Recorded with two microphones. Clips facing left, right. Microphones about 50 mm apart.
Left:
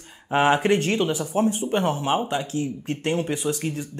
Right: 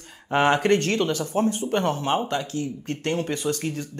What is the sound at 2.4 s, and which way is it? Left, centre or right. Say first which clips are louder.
A man's voice: left 2 dB; left.